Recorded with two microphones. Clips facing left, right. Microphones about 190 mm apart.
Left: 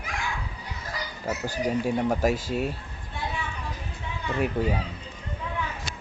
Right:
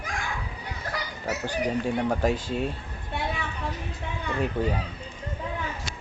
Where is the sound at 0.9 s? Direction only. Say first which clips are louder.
Right 1 dB; 65° right (ahead or behind).